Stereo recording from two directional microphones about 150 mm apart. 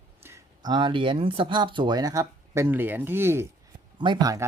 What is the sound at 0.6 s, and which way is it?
Speech, 30° right (ahead or behind).